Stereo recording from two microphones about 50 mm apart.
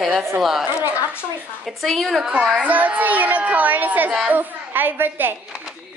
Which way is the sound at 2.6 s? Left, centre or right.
Right.